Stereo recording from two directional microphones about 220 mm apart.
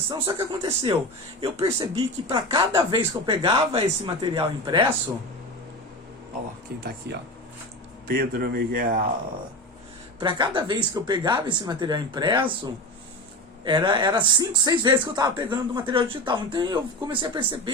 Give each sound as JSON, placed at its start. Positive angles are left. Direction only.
{"t": 0.1, "sound": "speech", "side_deg": -20}
{"t": 7.1, "sound": "speech", "side_deg": -50}
{"t": 10.2, "sound": "speech", "side_deg": -20}
{"t": 13.7, "sound": "speech", "side_deg": -20}